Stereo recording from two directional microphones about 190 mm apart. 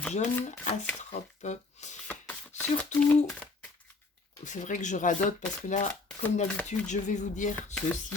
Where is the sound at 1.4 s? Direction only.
40° left (ahead or behind).